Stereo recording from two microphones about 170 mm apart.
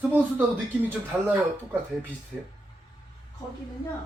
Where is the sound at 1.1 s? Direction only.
5° right (ahead or behind).